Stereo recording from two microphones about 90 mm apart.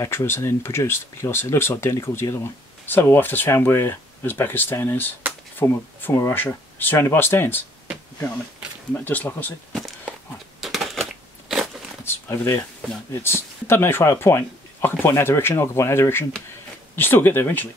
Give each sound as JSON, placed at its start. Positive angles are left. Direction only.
{"t": 0.0, "sound": "speech", "side_deg": 30}
{"t": 8.9, "sound": "speech", "side_deg": 20}
{"t": 9.7, "sound": "a sound", "side_deg": 0}
{"t": 10.6, "sound": "crushing", "side_deg": 0}
{"t": 12.0, "sound": "a sound", "side_deg": 25}
{"t": 13.1, "sound": "speech", "side_deg": 25}